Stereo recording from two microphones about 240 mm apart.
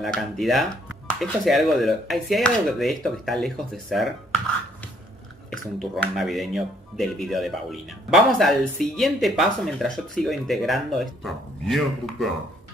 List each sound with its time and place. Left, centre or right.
0.0 s speech: centre
5.5 s speech: centre